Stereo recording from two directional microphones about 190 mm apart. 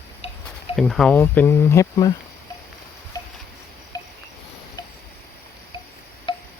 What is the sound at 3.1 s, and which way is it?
Insect, 15° left (ahead or behind).